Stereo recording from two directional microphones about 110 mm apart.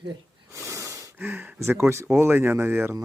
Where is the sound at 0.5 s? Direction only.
25° right (ahead or behind).